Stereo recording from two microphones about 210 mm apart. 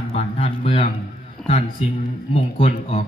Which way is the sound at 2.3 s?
35° left (ahead or behind).